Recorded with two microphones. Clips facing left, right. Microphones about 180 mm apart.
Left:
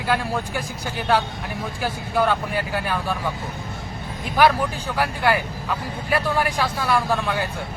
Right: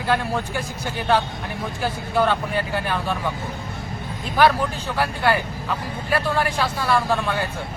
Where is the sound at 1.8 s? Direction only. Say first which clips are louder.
Right 1 dB; 10° left (ahead or behind).